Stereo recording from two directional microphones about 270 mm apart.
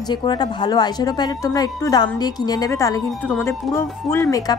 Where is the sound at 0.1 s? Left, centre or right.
Centre.